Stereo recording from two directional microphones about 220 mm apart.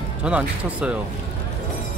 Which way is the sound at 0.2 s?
5° right (ahead or behind).